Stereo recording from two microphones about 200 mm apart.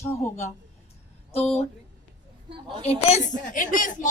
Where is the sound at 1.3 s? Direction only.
30° left (ahead or behind).